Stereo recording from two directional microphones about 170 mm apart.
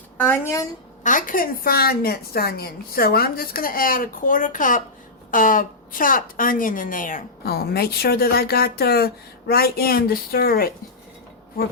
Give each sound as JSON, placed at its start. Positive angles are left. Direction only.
{"t": 0.2, "sound": "a woman's voice", "side_deg": 15}
{"t": 1.0, "sound": "a woman's voice", "side_deg": 50}